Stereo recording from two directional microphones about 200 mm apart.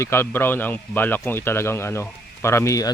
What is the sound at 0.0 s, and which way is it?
Speech, 10° left (ahead or behind).